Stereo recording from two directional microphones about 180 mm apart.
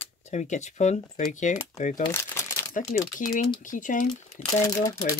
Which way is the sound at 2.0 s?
15° left (ahead or behind).